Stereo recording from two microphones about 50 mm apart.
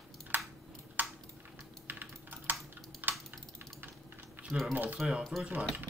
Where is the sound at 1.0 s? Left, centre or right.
Right.